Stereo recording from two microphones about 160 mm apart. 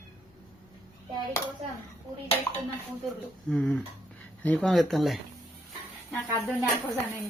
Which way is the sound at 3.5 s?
5° left (ahead or behind).